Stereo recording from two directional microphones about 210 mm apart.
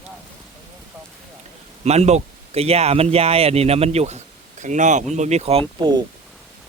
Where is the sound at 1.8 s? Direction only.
30° right (ahead or behind).